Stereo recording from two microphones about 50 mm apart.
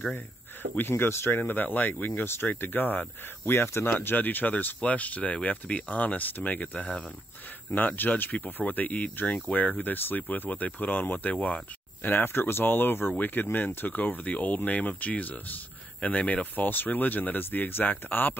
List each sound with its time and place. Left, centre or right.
0.7 s speech: left
1.4 s speech: left
3.5 s speech: left
7.7 s speech: left
12.1 s speech: left